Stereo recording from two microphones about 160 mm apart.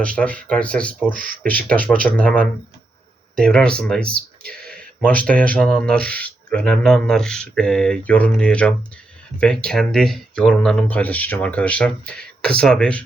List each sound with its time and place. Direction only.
0.0 s speech: 5° left (ahead or behind)
1.1 s speech: 60° right (ahead or behind)
1.5 s speech: 10° left (ahead or behind)